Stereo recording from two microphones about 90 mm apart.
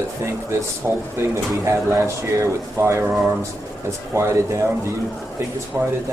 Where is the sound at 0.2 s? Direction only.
30° right (ahead or behind).